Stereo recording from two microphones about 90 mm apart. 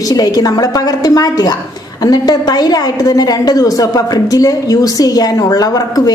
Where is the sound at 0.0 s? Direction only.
45° left (ahead or behind).